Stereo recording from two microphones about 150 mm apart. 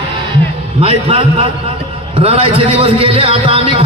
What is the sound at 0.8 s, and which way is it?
A man's voice, 40° right (ahead or behind).